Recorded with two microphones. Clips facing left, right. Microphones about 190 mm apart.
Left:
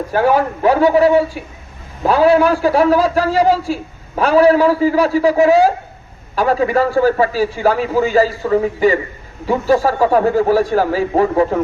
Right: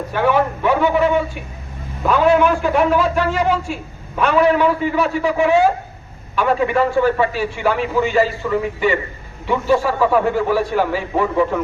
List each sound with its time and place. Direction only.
0.1 s a man's voice: 40° left (ahead or behind)